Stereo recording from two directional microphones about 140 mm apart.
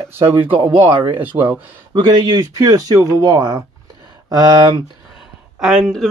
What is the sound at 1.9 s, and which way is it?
Speech, 30° right (ahead or behind).